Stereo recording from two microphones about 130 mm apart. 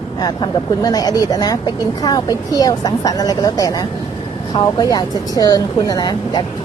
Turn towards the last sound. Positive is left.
turn(degrees=30)  # may be behind; listen again after turning